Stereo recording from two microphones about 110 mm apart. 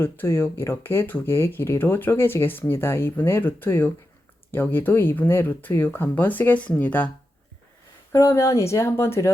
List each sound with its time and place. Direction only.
0.0 s speech: 20° left (ahead or behind)
8.1 s speech: 25° left (ahead or behind)